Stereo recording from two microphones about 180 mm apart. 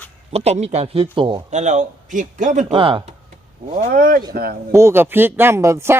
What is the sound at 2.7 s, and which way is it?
Speech, 30° right (ahead or behind).